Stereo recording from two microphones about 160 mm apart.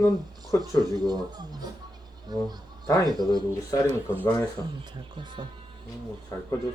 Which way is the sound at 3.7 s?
20° left (ahead or behind).